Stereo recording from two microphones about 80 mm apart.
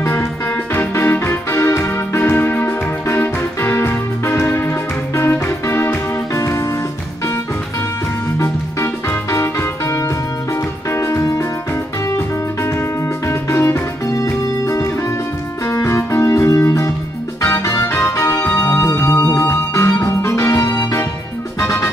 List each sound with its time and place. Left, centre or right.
0.0 s music: left
8.4 s music: left
13.3 s music: left